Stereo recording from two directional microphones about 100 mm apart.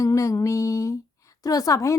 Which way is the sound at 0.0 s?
30° left (ahead or behind).